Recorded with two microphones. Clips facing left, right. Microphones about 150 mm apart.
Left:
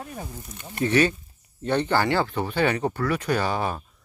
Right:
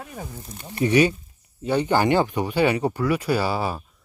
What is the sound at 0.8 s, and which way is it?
Speech, 15° right (ahead or behind).